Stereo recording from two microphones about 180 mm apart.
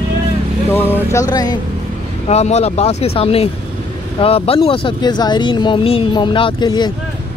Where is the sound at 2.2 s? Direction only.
35° left (ahead or behind).